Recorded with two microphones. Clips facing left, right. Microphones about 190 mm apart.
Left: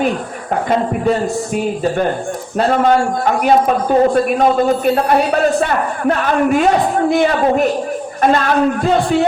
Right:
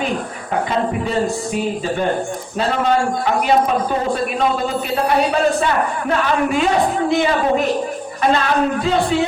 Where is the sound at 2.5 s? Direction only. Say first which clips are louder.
Left 4 dB; 45° left (ahead or behind).